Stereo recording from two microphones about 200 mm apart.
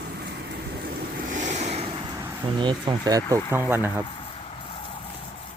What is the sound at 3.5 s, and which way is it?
Speech, 10° right (ahead or behind).